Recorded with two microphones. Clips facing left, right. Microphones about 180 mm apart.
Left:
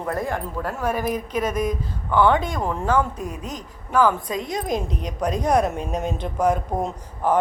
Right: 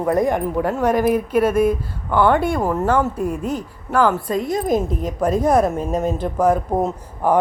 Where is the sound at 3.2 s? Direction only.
55° right (ahead or behind).